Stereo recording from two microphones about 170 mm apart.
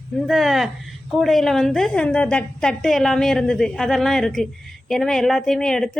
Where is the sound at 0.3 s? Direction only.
Centre (ahead or behind).